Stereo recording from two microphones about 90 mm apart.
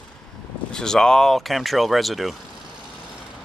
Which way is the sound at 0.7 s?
5° left (ahead or behind).